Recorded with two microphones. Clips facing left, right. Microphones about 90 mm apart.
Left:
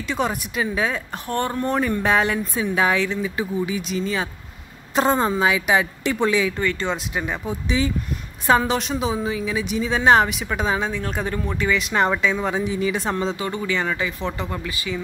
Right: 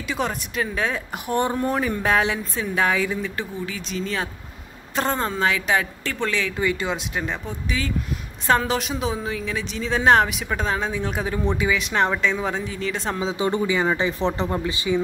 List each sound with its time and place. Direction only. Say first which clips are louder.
0.1 s speech: left 2 dB; centre (ahead or behind)
1.2 s speech: right 2 dB; 15° right (ahead or behind)
3.2 s a woman's voice: left 4 dB; 5° left (ahead or behind)
4.9 s a woman's voice: left 5 dB; 15° left (ahead or behind)
6.5 s speech: even; 10° right (ahead or behind)
7.8 s speech: left 6 dB; 20° left (ahead or behind)
8.5 s speech: left 2 dB; centre (ahead or behind)
10.9 s speech: even; 10° right (ahead or behind)
11.8 s speech: left 1 dB; centre (ahead or behind)
12.5 s a woman's voice: left 5 dB; 15° left (ahead or behind); by 13.4 s centre (ahead or behind)
13.4 s speech: right 3 dB; 20° right (ahead or behind)
13.9 s speech: right 3 dB; 30° right (ahead or behind)